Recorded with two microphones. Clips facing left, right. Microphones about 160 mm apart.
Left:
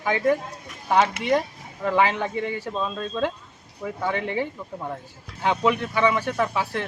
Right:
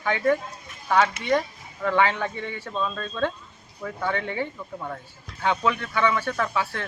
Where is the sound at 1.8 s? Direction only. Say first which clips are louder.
Left 1 dB; 15° left (ahead or behind).